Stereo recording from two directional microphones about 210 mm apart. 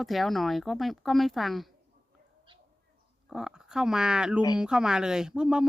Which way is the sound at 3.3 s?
Centre (ahead or behind).